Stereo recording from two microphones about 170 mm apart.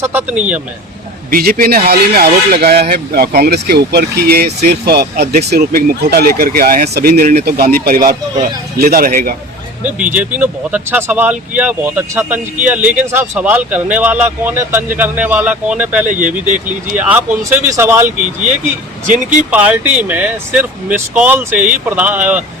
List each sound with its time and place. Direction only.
0.0 s speech: 10° right (ahead or behind)
1.3 s speech: 60° right (ahead or behind)
10.2 s speech: 10° right (ahead or behind)
19.0 s speech: 45° right (ahead or behind)
19.5 s speech: 10° right (ahead or behind)